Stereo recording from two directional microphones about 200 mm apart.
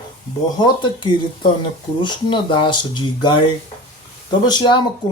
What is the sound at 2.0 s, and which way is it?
Speech, 25° left (ahead or behind).